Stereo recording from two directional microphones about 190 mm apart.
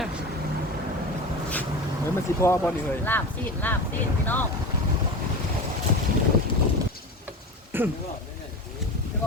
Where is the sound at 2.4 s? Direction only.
10° left (ahead or behind).